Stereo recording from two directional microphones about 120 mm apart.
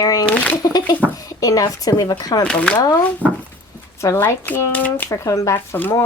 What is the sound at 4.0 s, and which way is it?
Speech, 25° left (ahead or behind).